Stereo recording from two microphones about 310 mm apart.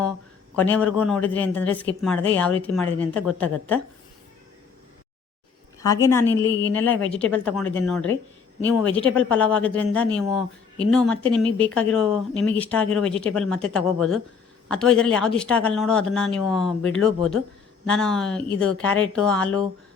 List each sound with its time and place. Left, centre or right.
0.6 s speech: centre
5.8 s a woman's voice: centre
6.6 s a woman's voice: left
7.1 s speech: centre